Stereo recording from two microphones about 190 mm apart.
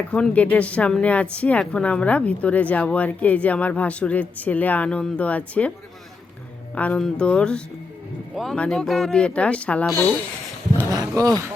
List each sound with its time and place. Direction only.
0.1 s speech: 5° left (ahead or behind)
6.7 s speech: 5° left (ahead or behind)
10.9 s speech: 20° right (ahead or behind)